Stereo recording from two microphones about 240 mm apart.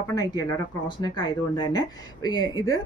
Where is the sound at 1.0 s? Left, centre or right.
Centre.